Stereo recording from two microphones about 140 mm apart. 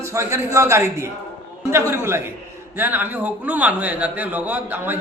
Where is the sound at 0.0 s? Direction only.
20° right (ahead or behind).